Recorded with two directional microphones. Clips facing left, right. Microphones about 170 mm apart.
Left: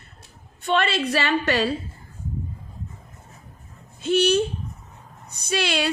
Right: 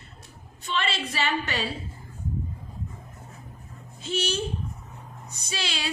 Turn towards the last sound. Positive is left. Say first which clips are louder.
# left 9 dB
turn(degrees=60)  # may be behind; listen again after turning